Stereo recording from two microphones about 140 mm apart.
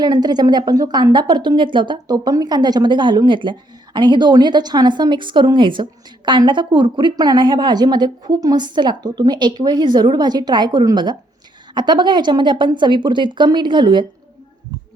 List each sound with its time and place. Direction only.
0.0 s a woman's voice: 30° right (ahead or behind)